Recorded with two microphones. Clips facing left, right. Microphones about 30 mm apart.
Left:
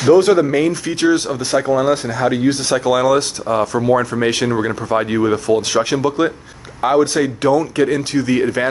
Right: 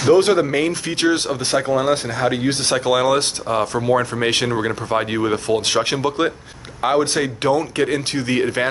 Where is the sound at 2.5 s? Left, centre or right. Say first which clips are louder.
Left 2 dB; right.